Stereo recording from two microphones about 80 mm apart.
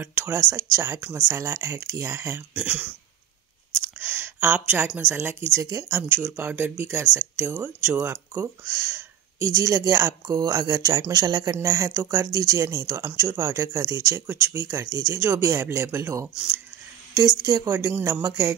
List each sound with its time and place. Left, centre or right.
0.0 s speech: right
5.7 s speech: right
5.9 s speech: right
8.4 s speech: right
10.2 s speech: right
11.5 s speech: right
14.2 s speech: right
16.3 s speech: centre
17.1 s speech: right
17.6 s speech: right